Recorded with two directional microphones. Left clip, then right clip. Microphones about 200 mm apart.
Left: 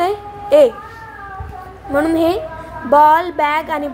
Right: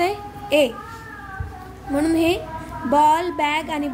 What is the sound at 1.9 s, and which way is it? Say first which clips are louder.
A woman's voice: left 5 dB; 15° left (ahead or behind).